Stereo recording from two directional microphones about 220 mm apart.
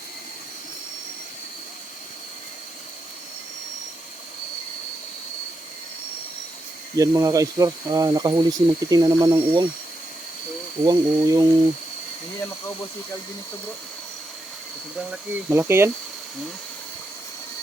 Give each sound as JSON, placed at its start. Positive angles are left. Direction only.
{"t": 6.9, "sound": "speech", "side_deg": -15}
{"t": 10.8, "sound": "speech", "side_deg": -15}
{"t": 15.1, "sound": "speech", "side_deg": -10}